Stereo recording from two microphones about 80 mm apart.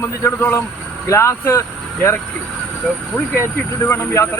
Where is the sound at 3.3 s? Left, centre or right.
Left.